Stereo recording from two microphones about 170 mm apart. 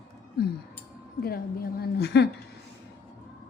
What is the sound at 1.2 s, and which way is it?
A woman's voice, 65° left (ahead or behind).